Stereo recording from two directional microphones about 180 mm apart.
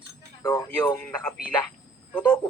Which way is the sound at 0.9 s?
5° left (ahead or behind).